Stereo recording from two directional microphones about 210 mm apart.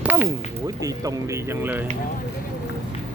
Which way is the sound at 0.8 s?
15° right (ahead or behind).